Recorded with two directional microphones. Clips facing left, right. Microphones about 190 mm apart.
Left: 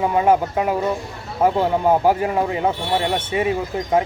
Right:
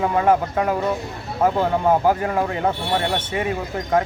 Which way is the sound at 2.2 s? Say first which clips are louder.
Left 2 dB; 15° left (ahead or behind).